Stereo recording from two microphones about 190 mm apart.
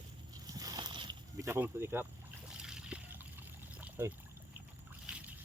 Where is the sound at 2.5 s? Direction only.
5° right (ahead or behind).